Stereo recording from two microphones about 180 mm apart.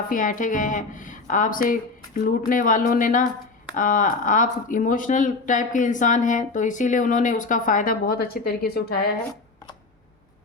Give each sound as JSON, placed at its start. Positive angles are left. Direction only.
{"t": 0.1, "sound": "speech", "side_deg": 45}